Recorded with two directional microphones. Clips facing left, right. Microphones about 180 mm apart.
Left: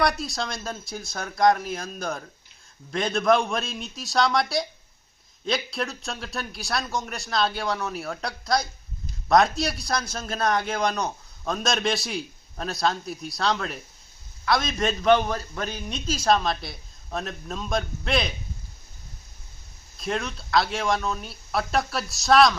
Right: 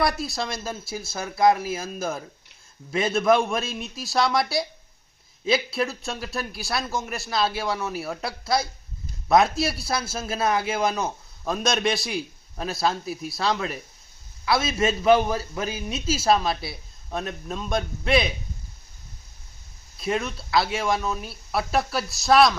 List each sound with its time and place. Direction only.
0.0 s a man's voice: centre (ahead or behind)
20.0 s a man's voice: 5° right (ahead or behind)